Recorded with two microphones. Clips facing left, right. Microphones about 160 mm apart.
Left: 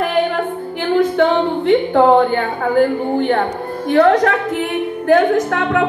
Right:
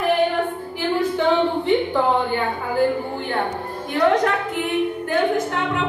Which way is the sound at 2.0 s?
65° left (ahead or behind).